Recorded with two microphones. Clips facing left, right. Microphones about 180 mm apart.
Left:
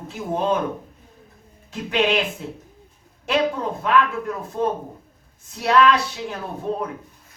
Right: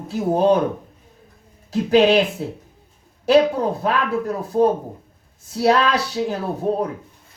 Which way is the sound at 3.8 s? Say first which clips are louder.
Even; 35° right (ahead or behind).